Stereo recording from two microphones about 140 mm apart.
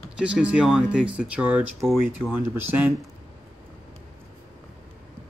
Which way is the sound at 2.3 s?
15° right (ahead or behind).